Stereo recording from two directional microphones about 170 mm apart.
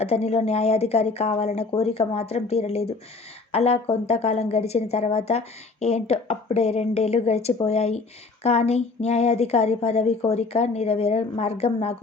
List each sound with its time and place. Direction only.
0.0 s a woman's voice: 40° left (ahead or behind)